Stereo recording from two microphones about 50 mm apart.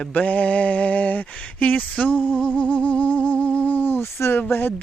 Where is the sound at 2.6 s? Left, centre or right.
Left.